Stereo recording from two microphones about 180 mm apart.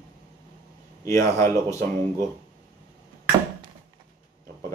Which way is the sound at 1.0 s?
15° left (ahead or behind).